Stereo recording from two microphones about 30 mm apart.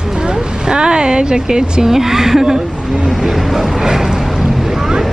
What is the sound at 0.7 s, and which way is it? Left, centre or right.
Speech, right.